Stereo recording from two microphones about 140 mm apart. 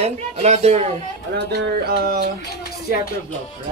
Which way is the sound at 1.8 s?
90° right.